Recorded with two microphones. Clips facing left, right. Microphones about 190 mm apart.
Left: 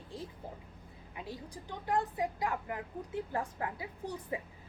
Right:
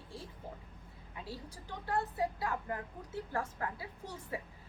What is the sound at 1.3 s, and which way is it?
A woman's voice, 15° left (ahead or behind).